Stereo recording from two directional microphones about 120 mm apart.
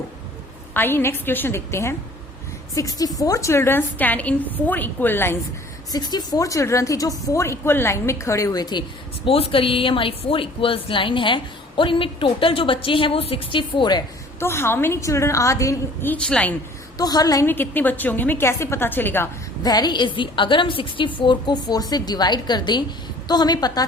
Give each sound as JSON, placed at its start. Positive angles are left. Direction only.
{"t": 0.7, "sound": "a woman's voice", "side_deg": 15}
{"t": 5.9, "sound": "a woman's voice", "side_deg": 35}
{"t": 9.2, "sound": "a woman's voice", "side_deg": 50}
{"t": 14.3, "sound": "a woman's voice", "side_deg": 20}
{"t": 16.0, "sound": "a woman's voice", "side_deg": 10}
{"t": 17.0, "sound": "a woman's voice", "side_deg": 30}
{"t": 17.4, "sound": "a woman's voice", "side_deg": 15}
{"t": 19.6, "sound": "a woman's voice", "side_deg": 35}